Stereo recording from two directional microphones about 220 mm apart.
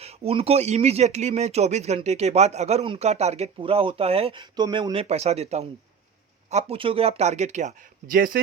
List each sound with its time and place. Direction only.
0.0 s speech: 25° right (ahead or behind)